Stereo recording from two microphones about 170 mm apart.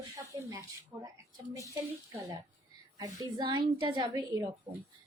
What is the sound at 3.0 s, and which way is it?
A woman's voice, 25° right (ahead or behind).